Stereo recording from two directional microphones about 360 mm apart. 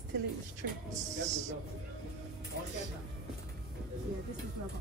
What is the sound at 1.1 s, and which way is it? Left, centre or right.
Speech, centre.